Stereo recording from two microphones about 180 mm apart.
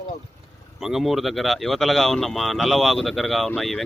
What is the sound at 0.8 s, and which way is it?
Speech, centre (ahead or behind).